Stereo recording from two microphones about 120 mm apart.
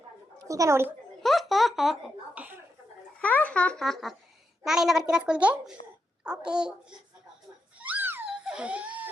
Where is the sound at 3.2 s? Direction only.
10° left (ahead or behind).